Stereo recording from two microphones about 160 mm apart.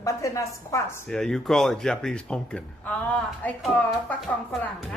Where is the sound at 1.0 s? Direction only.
5° left (ahead or behind).